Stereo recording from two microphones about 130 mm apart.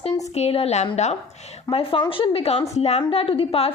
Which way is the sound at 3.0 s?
45° left (ahead or behind).